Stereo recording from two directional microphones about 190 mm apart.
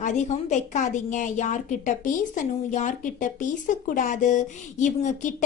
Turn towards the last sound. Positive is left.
turn(degrees=40)  # may be behind; listen again after turning